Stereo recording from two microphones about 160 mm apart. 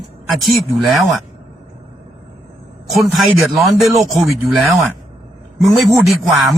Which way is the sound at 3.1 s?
Centre (ahead or behind).